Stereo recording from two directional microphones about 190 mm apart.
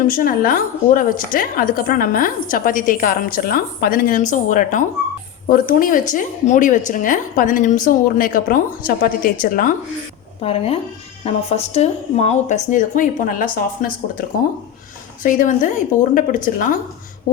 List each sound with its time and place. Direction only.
0.0 s a woman's voice: 45° left (ahead or behind)
10.4 s a woman's voice: 30° left (ahead or behind)